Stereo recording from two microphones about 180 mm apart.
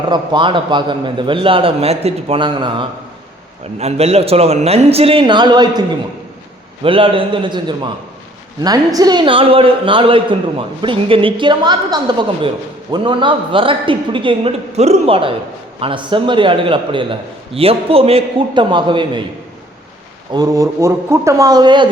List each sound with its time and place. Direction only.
0.1 s a man's voice: 25° right (ahead or behind)
6.8 s a man's voice: 30° right (ahead or behind)
20.3 s a man's voice: 20° right (ahead or behind)